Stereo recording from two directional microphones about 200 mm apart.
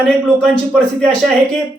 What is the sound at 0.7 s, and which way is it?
Speech, 5° left (ahead or behind).